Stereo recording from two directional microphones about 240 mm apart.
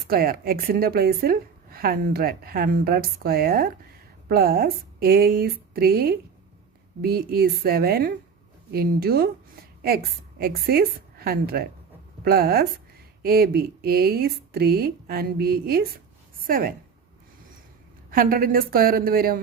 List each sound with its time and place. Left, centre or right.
0.1 s a woman's voice: right
18.1 s a woman's voice: right